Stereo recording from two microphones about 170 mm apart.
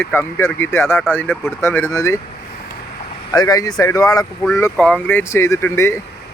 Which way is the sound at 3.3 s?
20° left (ahead or behind).